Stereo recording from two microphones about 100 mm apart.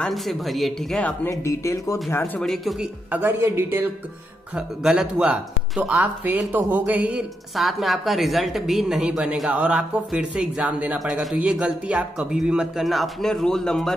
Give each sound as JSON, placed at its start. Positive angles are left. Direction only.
{"t": 0.0, "sound": "a woman's voice", "side_deg": 0}
{"t": 1.3, "sound": "speech", "side_deg": 30}
{"t": 2.4, "sound": "a woman's voice", "side_deg": 0}
{"t": 3.1, "sound": "speech", "side_deg": -20}
{"t": 4.6, "sound": "speech", "side_deg": -10}
{"t": 7.5, "sound": "a woman's voice", "side_deg": 0}
{"t": 11.0, "sound": "a woman's voice", "side_deg": 0}
{"t": 11.3, "sound": "a woman's voice", "side_deg": -10}